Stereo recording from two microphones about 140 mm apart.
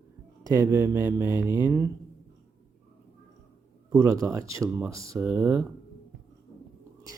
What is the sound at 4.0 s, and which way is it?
Speech, 20° right (ahead or behind).